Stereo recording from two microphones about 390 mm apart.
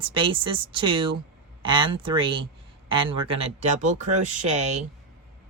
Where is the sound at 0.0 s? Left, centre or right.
Centre.